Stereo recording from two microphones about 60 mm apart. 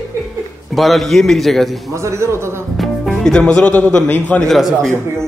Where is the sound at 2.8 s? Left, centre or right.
Centre.